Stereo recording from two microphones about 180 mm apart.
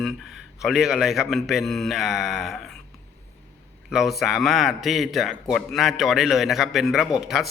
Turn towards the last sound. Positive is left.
turn(degrees=0)  # may be behind; listen again after turning